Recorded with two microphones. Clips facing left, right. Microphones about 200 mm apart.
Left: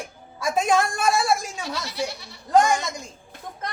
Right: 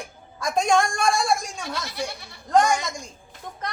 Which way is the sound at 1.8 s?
55° right (ahead or behind).